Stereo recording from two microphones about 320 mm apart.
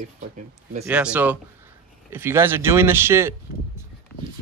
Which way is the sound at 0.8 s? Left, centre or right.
Centre.